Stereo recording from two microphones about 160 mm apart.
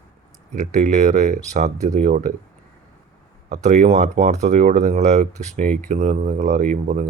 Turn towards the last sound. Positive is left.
turn(degrees=-65)  # may be behind; listen again after turning